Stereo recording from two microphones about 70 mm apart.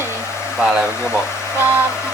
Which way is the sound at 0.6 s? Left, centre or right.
Centre.